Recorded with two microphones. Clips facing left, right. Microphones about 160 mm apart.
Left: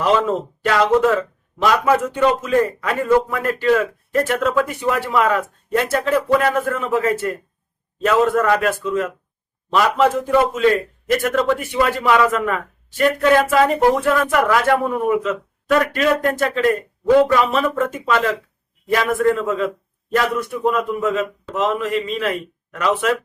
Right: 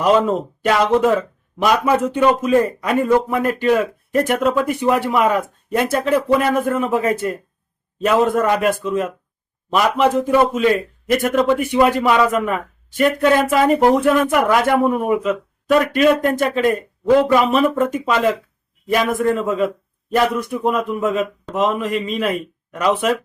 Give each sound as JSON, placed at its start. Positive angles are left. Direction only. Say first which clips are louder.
{"t": 0.0, "sound": "a man's voice", "louder": "right 2 dB", "side_deg": -15}